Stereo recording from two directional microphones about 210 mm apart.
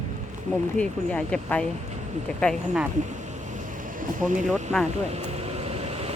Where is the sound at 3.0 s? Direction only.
35° right (ahead or behind).